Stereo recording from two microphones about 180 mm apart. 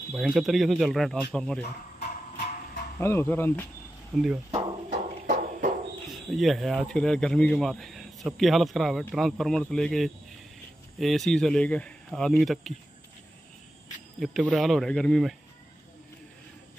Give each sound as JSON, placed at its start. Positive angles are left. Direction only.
{"t": 0.1, "sound": "speech", "side_deg": 0}
{"t": 3.0, "sound": "speech", "side_deg": 15}
{"t": 4.1, "sound": "speech", "side_deg": -5}
{"t": 4.8, "sound": "a sound", "side_deg": -50}
{"t": 6.0, "sound": "speech", "side_deg": 0}
{"t": 14.2, "sound": "speech", "side_deg": 0}